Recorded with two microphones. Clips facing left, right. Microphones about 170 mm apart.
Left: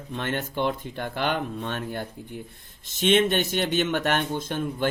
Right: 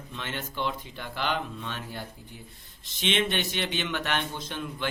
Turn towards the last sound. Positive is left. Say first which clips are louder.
# left 7 dB
turn(degrees=50)  # may be behind; listen again after turning